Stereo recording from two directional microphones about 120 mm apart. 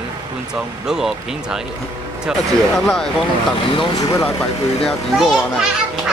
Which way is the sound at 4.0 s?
30° left (ahead or behind).